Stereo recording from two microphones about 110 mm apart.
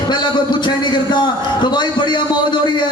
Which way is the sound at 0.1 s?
40° left (ahead or behind).